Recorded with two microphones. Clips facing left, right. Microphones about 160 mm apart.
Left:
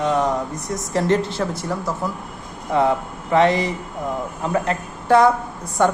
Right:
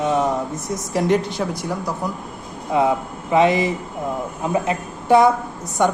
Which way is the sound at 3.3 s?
20° right (ahead or behind).